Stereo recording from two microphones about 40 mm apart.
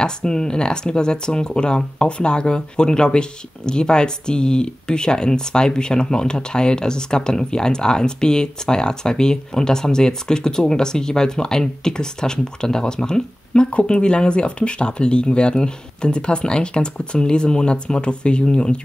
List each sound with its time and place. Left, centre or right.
0.0 s speech: centre